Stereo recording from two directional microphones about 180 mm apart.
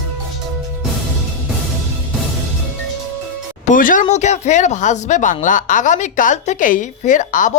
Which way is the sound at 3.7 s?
50° left (ahead or behind).